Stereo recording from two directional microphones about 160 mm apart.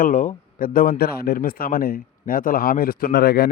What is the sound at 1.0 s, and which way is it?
Speech, 75° left (ahead or behind).